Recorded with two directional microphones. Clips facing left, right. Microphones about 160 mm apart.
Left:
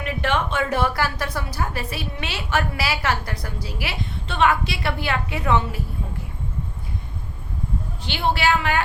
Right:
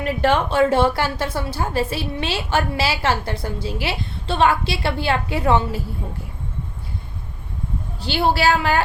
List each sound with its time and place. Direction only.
0.0 s a woman's voice: 35° right (ahead or behind)
8.0 s a woman's voice: 35° right (ahead or behind)